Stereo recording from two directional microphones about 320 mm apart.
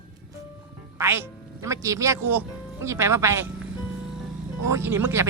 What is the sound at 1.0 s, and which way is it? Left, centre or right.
Speech, centre.